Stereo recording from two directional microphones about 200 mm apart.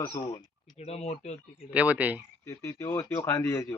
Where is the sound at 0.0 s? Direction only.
20° left (ahead or behind).